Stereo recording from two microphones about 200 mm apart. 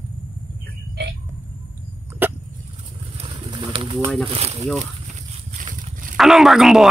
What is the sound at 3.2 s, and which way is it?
Pigeon, 25° right (ahead or behind).